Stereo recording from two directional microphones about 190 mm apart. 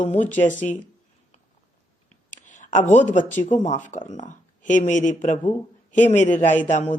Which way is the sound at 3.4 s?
40° left (ahead or behind).